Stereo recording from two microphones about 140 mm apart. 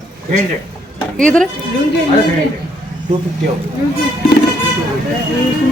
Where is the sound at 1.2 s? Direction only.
5° left (ahead or behind).